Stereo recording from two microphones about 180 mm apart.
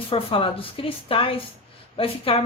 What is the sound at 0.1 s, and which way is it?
Speech, 30° left (ahead or behind).